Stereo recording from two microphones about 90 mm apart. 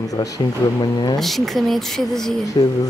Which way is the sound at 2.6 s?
50° left (ahead or behind).